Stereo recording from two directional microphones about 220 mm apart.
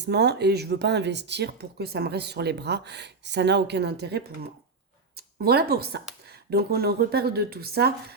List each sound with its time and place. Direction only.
0.0 s speech: 50° right (ahead or behind)